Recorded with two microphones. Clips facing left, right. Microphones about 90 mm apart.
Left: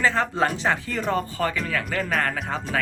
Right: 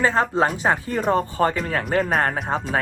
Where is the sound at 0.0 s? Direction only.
20° right (ahead or behind).